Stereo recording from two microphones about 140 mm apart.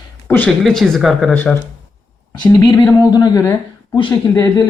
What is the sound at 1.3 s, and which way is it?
Speech, 10° left (ahead or behind).